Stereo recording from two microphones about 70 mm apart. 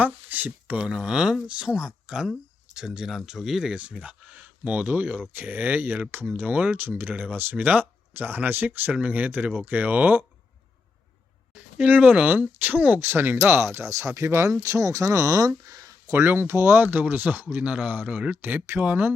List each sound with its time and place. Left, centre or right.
0.0 s speech: right
0.9 s speech: centre
11.5 s speech: right
16.1 s speech: right